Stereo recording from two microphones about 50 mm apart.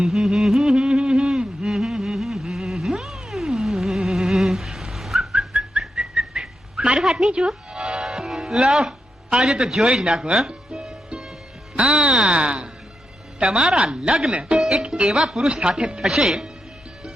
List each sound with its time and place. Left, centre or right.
0.0 s music: centre
1.6 s music: centre
5.8 s whistling: centre
7.3 s music: centre
9.3 s speech: centre
10.3 s music: centre
11.8 s speech: right
14.3 s speech: right
16.0 s speech: centre